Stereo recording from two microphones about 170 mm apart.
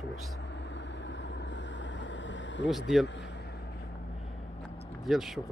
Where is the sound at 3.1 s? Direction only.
90° left.